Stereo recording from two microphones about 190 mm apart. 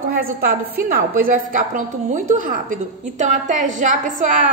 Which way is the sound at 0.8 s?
50° right (ahead or behind).